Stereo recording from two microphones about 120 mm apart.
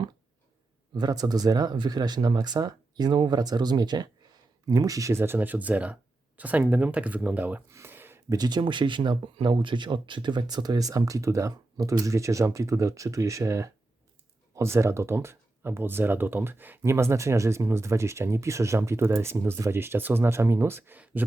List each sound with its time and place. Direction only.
0.9 s speech: 35° right (ahead or behind)
8.3 s speech: 35° right (ahead or behind); by 21.2 s 15° right (ahead or behind)